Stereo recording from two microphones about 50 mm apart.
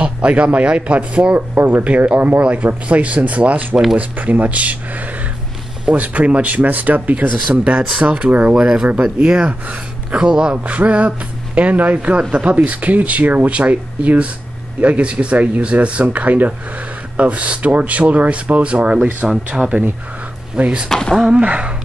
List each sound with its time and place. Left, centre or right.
0.0 s speech: right
1.5 s speech: right
8.5 s speech: centre
20.9 s speech: centre
21.4 s speech: right